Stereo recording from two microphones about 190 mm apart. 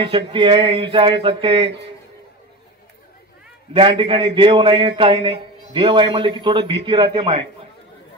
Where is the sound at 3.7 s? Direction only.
30° right (ahead or behind).